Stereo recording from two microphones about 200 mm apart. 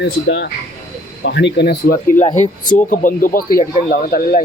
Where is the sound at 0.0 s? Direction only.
60° left (ahead or behind).